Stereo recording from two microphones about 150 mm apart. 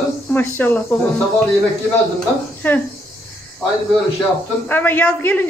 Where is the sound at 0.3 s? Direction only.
10° left (ahead or behind).